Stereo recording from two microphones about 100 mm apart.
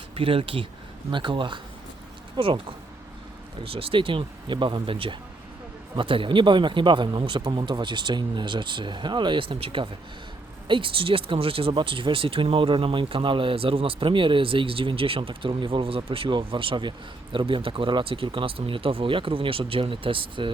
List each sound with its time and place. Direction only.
0.1 s speech: 65° right (ahead or behind)
3.6 s speech: 70° right (ahead or behind)
11.8 s speech: 55° right (ahead or behind)